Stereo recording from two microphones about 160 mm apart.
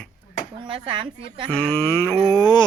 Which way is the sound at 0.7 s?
30° right (ahead or behind).